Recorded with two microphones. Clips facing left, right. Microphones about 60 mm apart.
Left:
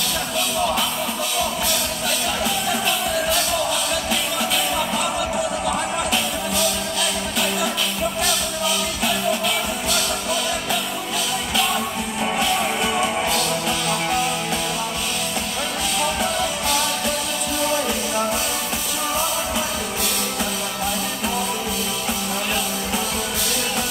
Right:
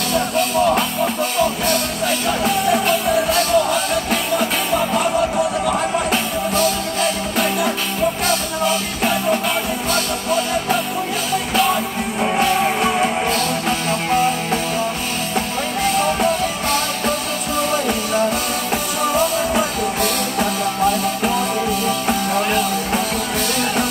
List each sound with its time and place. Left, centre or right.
0.1 s music: right
6.1 s music: right
12.4 s music: right
15.8 s music: right
19.5 s music: right
22.0 s music: right